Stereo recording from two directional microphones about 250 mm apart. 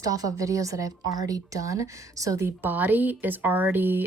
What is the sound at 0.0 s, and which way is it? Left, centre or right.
Speech, centre.